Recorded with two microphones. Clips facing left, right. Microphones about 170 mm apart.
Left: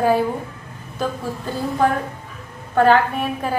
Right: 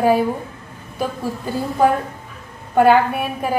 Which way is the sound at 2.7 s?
10° right (ahead or behind).